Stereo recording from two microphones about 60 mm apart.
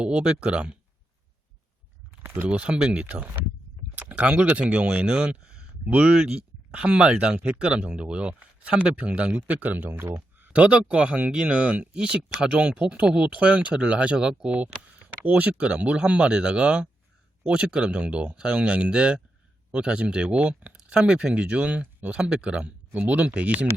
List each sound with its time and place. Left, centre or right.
0.0 s speech: centre
2.2 s speech: right
2.5 s speech: right
9.5 s speech: right
22.9 s speech: right